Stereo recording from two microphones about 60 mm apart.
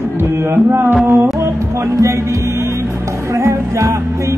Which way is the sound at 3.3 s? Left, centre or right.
Right.